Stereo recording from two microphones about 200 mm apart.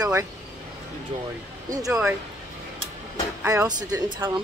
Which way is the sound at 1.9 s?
5° right (ahead or behind).